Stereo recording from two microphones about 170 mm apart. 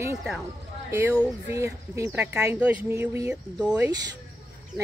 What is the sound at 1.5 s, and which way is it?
Speech, 15° right (ahead or behind).